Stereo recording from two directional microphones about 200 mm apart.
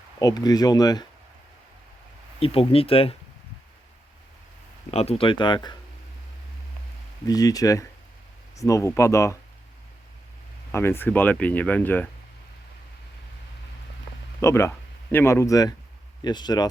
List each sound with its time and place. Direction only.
0.2 s speech: 20° left (ahead or behind)
2.4 s speech: 30° left (ahead or behind)
4.9 s speech: 30° left (ahead or behind)
7.3 s speech: 20° left (ahead or behind)
10.7 s speech: 10° left (ahead or behind)
14.4 s speech: 15° left (ahead or behind)